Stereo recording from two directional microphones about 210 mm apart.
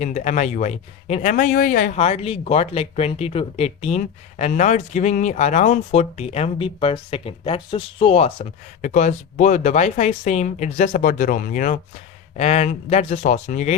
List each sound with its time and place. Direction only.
0.0 s speech: 35° left (ahead or behind)